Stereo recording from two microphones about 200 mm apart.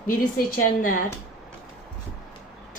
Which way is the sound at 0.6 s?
45° left (ahead or behind).